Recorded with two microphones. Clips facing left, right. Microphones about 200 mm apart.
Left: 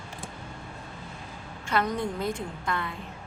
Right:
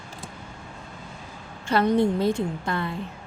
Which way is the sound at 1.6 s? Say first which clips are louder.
Right 7 dB; 30° right (ahead or behind).